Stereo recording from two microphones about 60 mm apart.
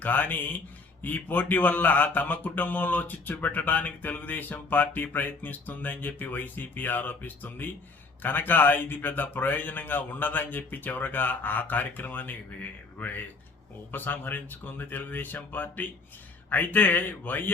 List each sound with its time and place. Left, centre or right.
0.0 s a man's voice: left